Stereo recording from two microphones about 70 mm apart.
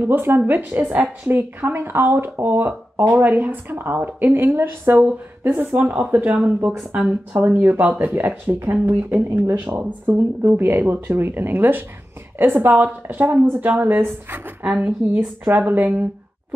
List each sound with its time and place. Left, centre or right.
0.0 s a woman's voice: right
14.6 s speech: centre